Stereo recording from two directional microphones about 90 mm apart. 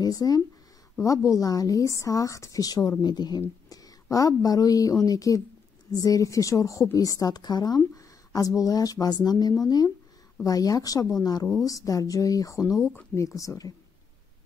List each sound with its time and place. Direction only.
0.0 s a woman's voice: 45° left (ahead or behind)